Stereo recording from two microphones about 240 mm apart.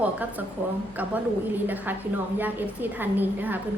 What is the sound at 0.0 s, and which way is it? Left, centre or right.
Speech, centre.